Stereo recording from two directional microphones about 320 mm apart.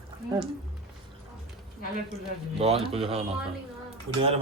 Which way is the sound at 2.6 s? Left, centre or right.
Centre.